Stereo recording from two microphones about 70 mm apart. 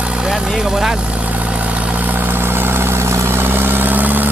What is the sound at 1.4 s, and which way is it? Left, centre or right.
Vehicle, centre.